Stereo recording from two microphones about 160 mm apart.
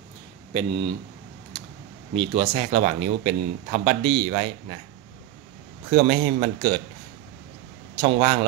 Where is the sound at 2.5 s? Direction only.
50° right (ahead or behind).